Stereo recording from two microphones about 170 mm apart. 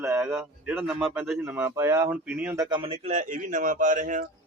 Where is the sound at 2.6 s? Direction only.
30° right (ahead or behind); by 4.3 s 50° right (ahead or behind).